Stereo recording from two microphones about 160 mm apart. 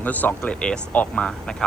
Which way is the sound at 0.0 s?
10° left (ahead or behind).